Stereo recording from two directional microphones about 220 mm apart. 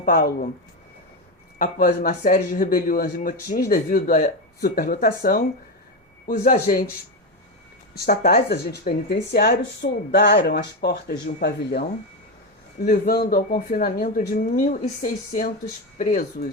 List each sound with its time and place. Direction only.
0.0 s speech: 40° left (ahead or behind)
1.5 s speech: 40° left (ahead or behind)
7.9 s speech: 45° left (ahead or behind)